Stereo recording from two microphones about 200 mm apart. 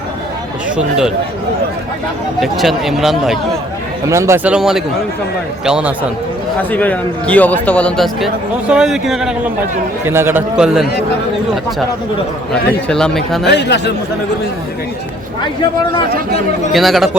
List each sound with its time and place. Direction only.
0.8 s speech: 5° right (ahead or behind)
2.4 s speech: centre (ahead or behind)
4.1 s a man's voice: 15° right (ahead or behind)
6.6 s a man's voice: 10° left (ahead or behind)
12.9 s speech: centre (ahead or behind)
13.4 s speech: 60° left (ahead or behind)
16.7 s speech: centre (ahead or behind)